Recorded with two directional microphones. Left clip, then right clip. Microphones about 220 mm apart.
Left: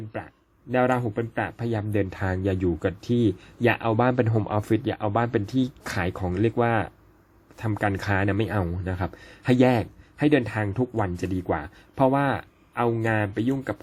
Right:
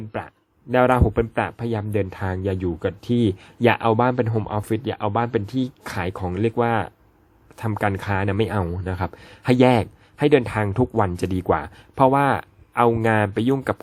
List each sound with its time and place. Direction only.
0.1 s a sound: 20° right (ahead or behind)
1.0 s speech: 25° right (ahead or behind)
1.5 s speech: 10° right (ahead or behind)